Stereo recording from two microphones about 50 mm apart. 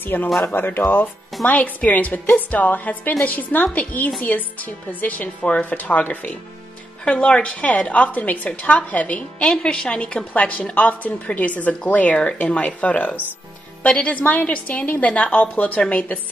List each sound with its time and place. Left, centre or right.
0.0 s a woman's voice: left
1.4 s a woman's voice: left